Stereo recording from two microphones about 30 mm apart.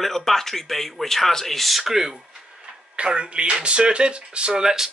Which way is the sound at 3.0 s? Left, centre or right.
Right.